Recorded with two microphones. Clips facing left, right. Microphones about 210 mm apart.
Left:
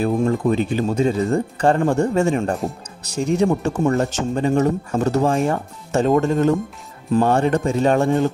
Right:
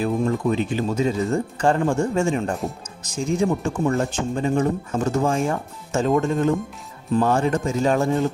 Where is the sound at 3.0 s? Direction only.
70° left (ahead or behind).